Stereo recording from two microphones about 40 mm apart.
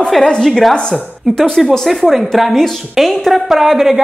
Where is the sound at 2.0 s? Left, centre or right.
Centre.